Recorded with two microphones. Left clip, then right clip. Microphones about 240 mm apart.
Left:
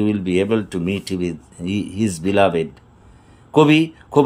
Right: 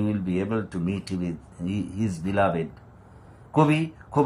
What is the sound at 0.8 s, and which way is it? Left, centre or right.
Speech, left.